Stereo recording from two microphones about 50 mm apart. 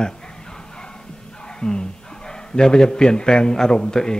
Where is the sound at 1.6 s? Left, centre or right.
Centre.